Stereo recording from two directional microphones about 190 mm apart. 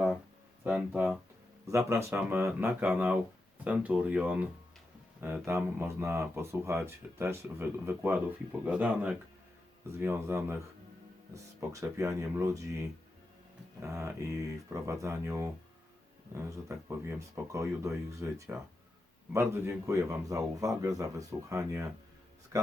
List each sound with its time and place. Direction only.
0.6 s speech: 10° right (ahead or behind)
13.8 s speech: 15° right (ahead or behind)